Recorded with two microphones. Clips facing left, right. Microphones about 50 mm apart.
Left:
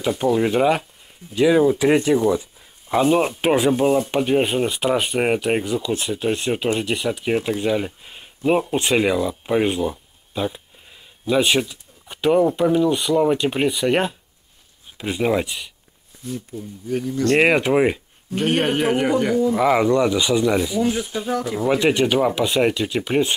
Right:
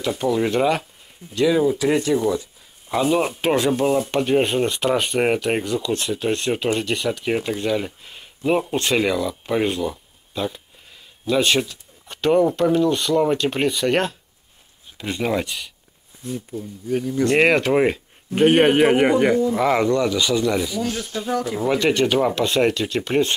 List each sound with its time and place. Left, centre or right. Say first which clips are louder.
0.2 s speech: left 1 dB; centre
2.9 s speech: left 2 dB; centre
17.4 s speech: even; centre
18.3 s a man's voice: right 5 dB; centre
19.4 s speech: left 1 dB; centre
19.9 s speech: left 2 dB; centre
21.3 s speech: even; centre
21.7 s speech: even; centre